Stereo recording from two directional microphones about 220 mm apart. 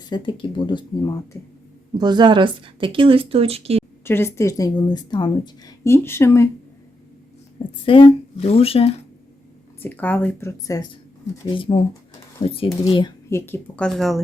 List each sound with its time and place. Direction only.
0.1 s speech: 20° left (ahead or behind)
2.0 s speech: 20° right (ahead or behind)
4.0 s speech: 10° left (ahead or behind)
7.9 s speech: 25° left (ahead or behind)
9.8 s speech: 10° left (ahead or behind)
13.4 s speech: 5° left (ahead or behind)